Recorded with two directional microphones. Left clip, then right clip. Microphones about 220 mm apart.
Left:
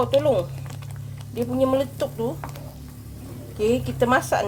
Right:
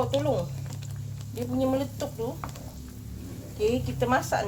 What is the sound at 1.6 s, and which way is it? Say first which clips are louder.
Speech: left 6 dB; 35° left (ahead or behind).